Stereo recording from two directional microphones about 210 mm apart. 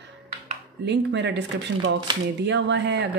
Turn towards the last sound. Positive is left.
turn(degrees=-55)  # may be behind; listen again after turning